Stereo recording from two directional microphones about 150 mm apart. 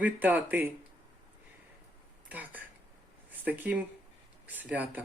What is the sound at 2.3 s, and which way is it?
Speech, 10° right (ahead or behind).